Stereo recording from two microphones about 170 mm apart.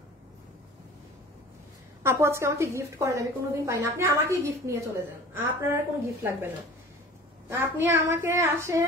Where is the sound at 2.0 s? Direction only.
15° right (ahead or behind).